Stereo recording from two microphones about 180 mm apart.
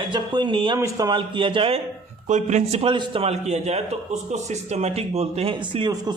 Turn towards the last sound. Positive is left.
turn(degrees=-25)  # may be behind; listen again after turning